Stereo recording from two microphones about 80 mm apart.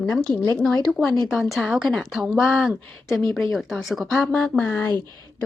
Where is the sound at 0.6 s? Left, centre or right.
Centre.